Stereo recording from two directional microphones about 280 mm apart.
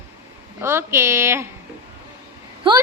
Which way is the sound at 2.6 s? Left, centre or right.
Centre.